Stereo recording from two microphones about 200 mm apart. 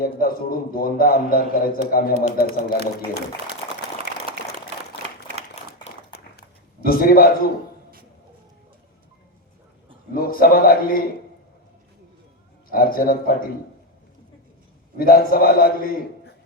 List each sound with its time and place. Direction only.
0.0 s a man's voice: 45° left (ahead or behind)
5.6 s a sound: 35° left (ahead or behind)
6.8 s a man's voice: 45° left (ahead or behind)
10.2 s a man's voice: 45° left (ahead or behind)
12.7 s a man's voice: 45° left (ahead or behind)
14.9 s a man's voice: 45° left (ahead or behind)